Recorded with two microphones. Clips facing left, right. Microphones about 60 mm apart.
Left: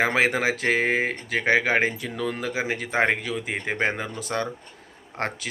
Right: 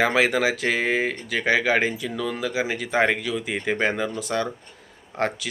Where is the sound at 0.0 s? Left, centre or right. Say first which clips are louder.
Right 2 dB; left.